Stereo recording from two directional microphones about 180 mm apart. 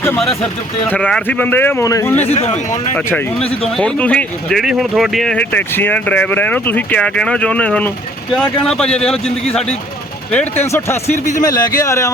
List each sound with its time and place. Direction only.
0.9 s speech: 5° left (ahead or behind)
2.2 s speech: 35° left (ahead or behind)
3.8 s speech: 5° left (ahead or behind)